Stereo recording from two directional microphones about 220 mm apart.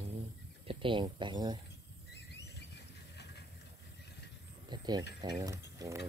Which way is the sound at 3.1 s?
50° left (ahead or behind).